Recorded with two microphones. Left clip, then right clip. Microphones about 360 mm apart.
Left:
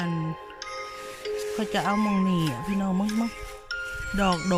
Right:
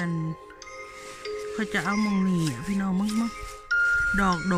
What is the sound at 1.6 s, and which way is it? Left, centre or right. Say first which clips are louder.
Speech: left 1 dB; centre.